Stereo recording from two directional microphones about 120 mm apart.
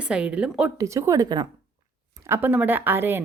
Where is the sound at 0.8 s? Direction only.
25° right (ahead or behind).